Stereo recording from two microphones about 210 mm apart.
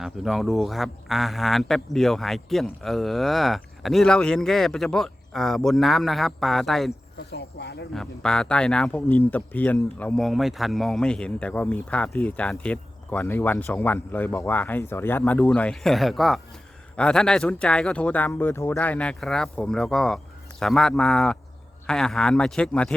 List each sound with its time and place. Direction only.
0.0 s speech: centre (ahead or behind)
7.3 s speech: 50° left (ahead or behind)
7.9 s speech: 5° left (ahead or behind)